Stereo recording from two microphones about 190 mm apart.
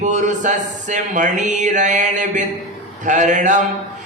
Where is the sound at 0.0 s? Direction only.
40° right (ahead or behind).